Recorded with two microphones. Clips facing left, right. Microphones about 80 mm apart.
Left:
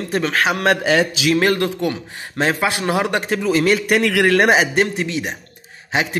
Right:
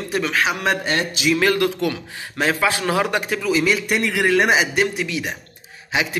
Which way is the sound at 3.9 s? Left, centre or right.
Left.